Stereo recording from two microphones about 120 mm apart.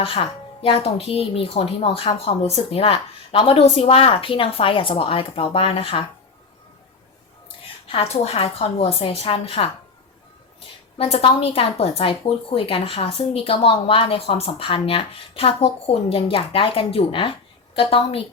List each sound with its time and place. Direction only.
0.0 s speech: 50° left (ahead or behind)
7.9 s a woman's voice: 55° left (ahead or behind)
10.9 s speech: 50° left (ahead or behind)